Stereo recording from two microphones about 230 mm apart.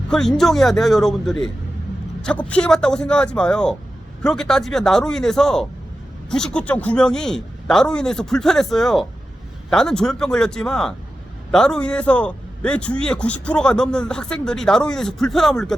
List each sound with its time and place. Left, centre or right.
0.1 s a man's voice: centre